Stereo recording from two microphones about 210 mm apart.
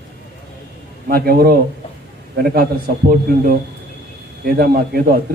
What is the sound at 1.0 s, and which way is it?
A man's voice, 45° right (ahead or behind).